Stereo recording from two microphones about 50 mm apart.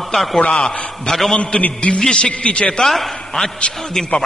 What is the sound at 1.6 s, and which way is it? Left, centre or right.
A man's voice, left.